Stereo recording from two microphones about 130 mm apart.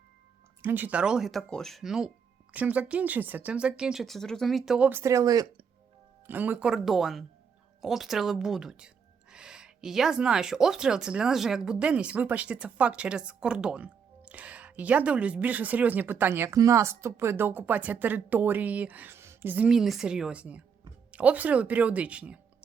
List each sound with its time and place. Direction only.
0.6 s speech: 15° right (ahead or behind)
4.9 s speech: 20° right (ahead or behind)
6.2 s speech: 15° right (ahead or behind)